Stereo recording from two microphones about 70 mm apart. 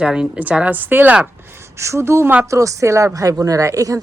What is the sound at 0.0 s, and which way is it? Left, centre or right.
Speech, centre.